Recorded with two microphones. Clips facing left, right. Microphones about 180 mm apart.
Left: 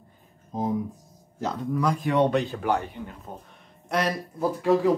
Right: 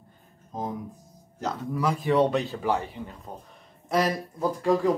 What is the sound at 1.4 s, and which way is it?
A man's voice, 5° right (ahead or behind).